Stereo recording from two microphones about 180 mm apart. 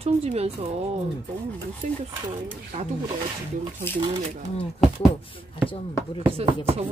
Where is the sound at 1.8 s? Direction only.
45° right (ahead or behind).